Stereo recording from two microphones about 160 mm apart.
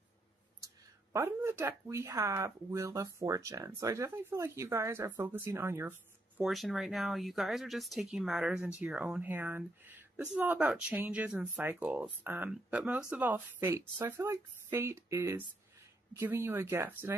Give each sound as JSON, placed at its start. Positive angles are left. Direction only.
{"t": 1.1, "sound": "speech", "side_deg": -15}
{"t": 6.4, "sound": "speech", "side_deg": 0}